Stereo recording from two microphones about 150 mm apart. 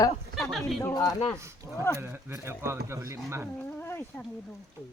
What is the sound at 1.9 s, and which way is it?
Speech, 15° right (ahead or behind).